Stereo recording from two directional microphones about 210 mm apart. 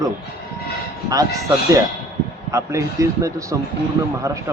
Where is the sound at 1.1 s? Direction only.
15° right (ahead or behind).